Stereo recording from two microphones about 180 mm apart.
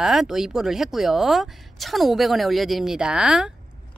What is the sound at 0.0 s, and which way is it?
Speech, centre (ahead or behind).